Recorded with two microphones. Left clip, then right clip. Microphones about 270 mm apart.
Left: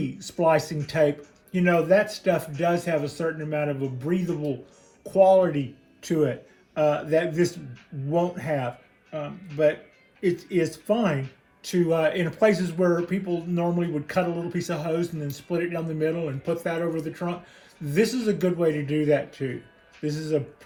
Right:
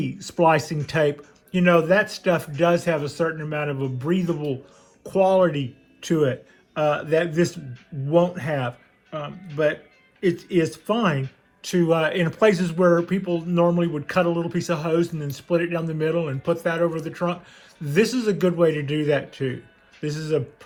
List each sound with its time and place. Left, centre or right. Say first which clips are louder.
0.0 s a man's voice: right 4 dB; centre
10.2 s a man's voice: right 3 dB; centre